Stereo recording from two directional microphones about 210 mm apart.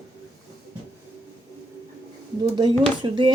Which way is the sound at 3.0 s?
25° right (ahead or behind).